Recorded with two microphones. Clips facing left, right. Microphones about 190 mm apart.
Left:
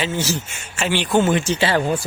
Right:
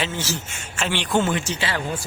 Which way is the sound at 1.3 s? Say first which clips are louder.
Left 6 dB; 30° left (ahead or behind).